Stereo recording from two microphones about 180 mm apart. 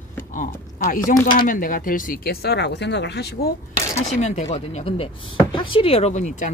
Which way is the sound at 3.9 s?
40° left (ahead or behind).